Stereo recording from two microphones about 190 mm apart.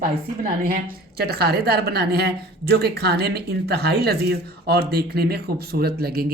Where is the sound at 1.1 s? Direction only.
55° right (ahead or behind).